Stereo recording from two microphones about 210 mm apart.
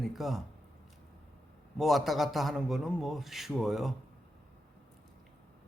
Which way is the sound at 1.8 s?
Centre (ahead or behind).